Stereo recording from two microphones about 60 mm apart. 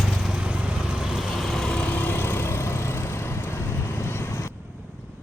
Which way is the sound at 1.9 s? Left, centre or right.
Left.